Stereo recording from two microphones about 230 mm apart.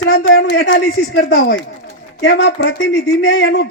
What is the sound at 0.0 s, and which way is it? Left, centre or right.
A woman's voice, left.